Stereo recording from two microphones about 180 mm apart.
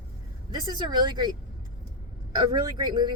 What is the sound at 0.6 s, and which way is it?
Speech, 25° right (ahead or behind).